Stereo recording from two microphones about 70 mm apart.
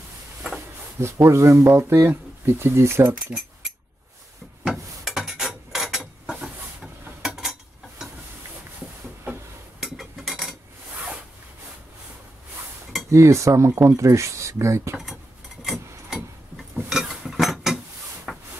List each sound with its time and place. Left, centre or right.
1.1 s speech: right
4.6 s mechanisms: centre
9.8 s a sound: centre
13.1 s speech: right
15.6 s a sound: centre
18.3 s wood: centre